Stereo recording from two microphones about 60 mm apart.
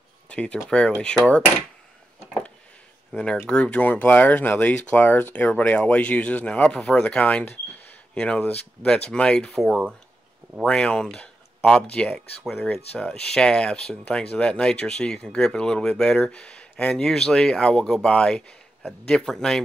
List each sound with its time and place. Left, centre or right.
0.3 s speech: left
3.1 s speech: left
3.8 s speech: left
9.5 s speech: centre
10.6 s speech: centre